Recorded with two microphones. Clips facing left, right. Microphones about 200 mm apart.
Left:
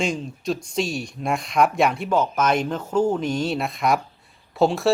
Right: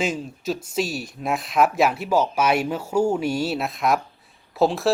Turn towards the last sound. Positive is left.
turn(degrees=0)  # may be behind; listen again after turning